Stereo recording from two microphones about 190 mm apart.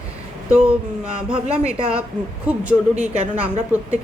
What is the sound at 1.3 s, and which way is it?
Speech, 30° right (ahead or behind).